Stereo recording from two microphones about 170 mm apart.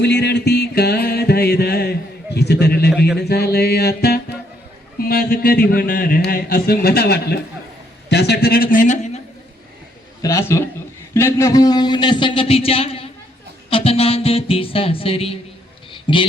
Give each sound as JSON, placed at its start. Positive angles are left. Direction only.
{"t": 0.0, "sound": "music", "side_deg": 80}
{"t": 4.9, "sound": "a man's voice", "side_deg": 65}
{"t": 10.2, "sound": "a man's voice", "side_deg": 20}
{"t": 15.9, "sound": "a sound", "side_deg": 30}